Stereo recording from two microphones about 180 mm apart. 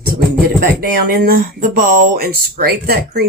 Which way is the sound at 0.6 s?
55° right (ahead or behind).